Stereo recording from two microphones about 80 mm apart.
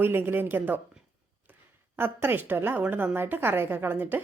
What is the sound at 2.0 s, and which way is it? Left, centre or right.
Speech, right.